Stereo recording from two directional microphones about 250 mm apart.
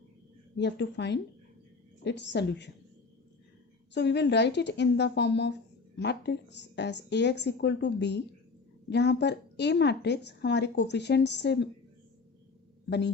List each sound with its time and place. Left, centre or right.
0.5 s a woman's voice: left
3.9 s a woman's voice: left